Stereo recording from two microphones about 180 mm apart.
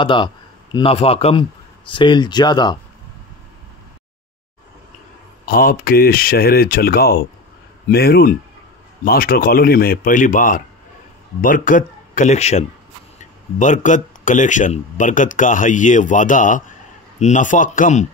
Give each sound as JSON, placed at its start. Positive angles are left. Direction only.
{"t": 0.0, "sound": "a man's voice", "side_deg": 25}
{"t": 5.4, "sound": "a man's voice", "side_deg": 50}